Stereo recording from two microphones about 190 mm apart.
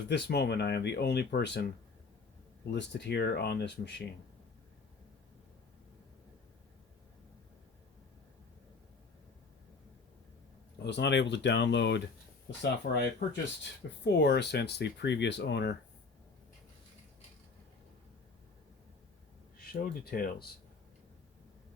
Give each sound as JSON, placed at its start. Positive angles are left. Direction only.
{"t": 0.1, "sound": "speech", "side_deg": 60}
{"t": 2.6, "sound": "speech", "side_deg": 65}
{"t": 10.8, "sound": "speech", "side_deg": 65}
{"t": 19.5, "sound": "speech", "side_deg": 50}